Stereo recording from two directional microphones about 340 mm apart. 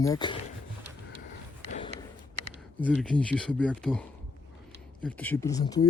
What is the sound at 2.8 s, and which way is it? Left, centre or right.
Speech, centre.